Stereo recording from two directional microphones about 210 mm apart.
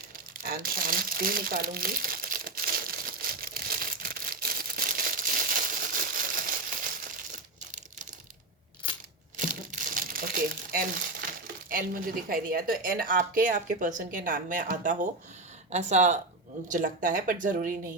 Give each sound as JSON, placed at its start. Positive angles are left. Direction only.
{"t": 0.4, "sound": "crumpling", "side_deg": -45}
{"t": 9.4, "sound": "crumpling", "side_deg": -40}
{"t": 12.3, "sound": "speech", "side_deg": -45}